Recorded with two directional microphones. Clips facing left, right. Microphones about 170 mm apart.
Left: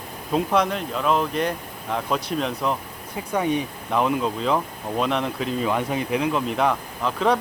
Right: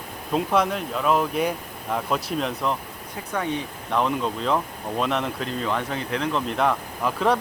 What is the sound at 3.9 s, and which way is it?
Speech, 5° left (ahead or behind).